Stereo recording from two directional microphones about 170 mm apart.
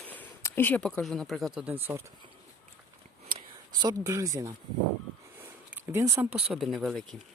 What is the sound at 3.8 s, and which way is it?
Speech, 20° right (ahead or behind).